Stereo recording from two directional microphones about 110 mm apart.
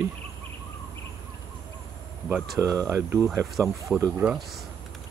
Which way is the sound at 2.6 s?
30° right (ahead or behind).